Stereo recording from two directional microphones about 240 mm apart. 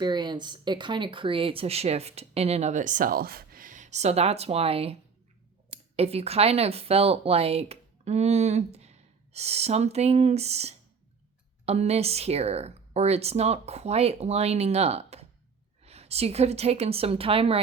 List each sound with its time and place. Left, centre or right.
0.0 s speech: centre